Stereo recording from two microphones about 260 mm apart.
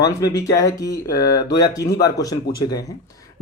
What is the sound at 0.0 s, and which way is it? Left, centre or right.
Speech, centre.